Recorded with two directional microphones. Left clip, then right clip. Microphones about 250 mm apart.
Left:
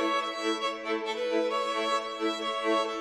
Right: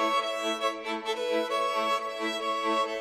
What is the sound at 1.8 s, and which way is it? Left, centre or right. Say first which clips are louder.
Music: even; right.